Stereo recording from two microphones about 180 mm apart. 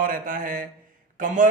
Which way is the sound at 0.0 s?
50° right (ahead or behind).